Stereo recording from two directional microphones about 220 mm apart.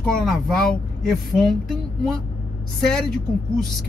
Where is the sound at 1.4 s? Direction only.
Centre (ahead or behind).